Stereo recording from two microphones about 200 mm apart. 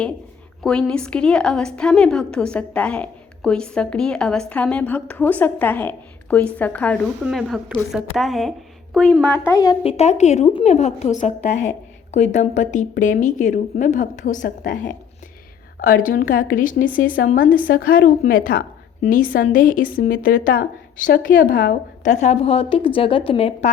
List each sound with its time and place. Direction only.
0.6 s a woman's voice: 5° left (ahead or behind)
9.8 s a woman's voice: 35° left (ahead or behind)